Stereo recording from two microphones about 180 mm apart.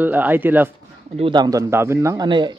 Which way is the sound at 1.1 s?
30° right (ahead or behind).